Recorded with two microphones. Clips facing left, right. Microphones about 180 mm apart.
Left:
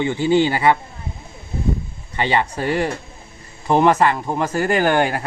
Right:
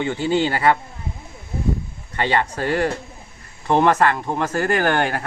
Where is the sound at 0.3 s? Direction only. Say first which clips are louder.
Left 4 dB; 15° left (ahead or behind).